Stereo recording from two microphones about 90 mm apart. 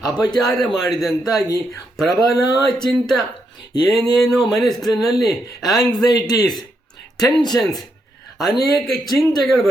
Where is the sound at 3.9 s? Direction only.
Centre (ahead or behind).